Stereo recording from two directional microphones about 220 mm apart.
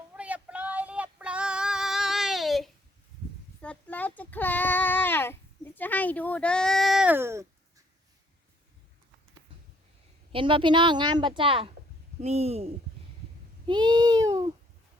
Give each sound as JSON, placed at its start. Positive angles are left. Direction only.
{"t": 0.2, "sound": "female singing", "side_deg": -5}
{"t": 3.6, "sound": "child singing", "side_deg": 5}
{"t": 10.3, "sound": "a woman's voice", "side_deg": -25}
{"t": 13.7, "sound": "a sound", "side_deg": -20}